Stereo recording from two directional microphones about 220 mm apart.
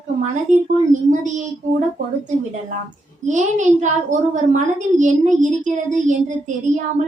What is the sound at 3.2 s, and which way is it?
A woman's voice, 35° right (ahead or behind).